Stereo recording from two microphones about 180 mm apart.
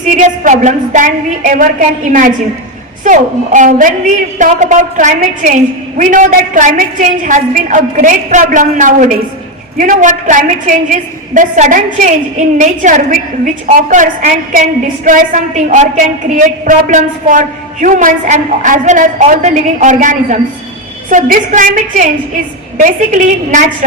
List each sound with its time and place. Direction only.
0.0 s a woman's voice: 45° right (ahead or behind)